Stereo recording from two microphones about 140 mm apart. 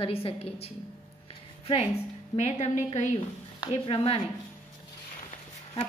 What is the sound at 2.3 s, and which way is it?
Speech, 50° left (ahead or behind).